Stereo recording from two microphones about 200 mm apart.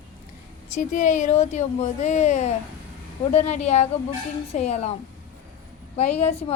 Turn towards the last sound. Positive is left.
turn(degrees=30)  # may be behind; listen again after turning